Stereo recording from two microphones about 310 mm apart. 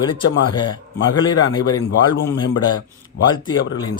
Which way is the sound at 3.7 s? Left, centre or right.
Centre.